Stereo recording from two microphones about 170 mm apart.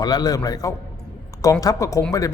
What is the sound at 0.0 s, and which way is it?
A man's voice, 25° left (ahead or behind).